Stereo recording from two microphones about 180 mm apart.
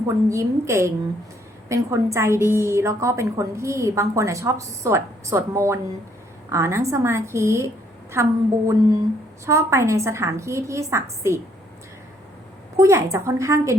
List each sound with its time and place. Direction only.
0.3 s a woman's voice: 15° right (ahead or behind)
12.7 s a woman's voice: 15° right (ahead or behind)